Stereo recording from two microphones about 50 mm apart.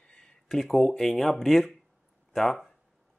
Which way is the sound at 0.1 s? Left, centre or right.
Centre.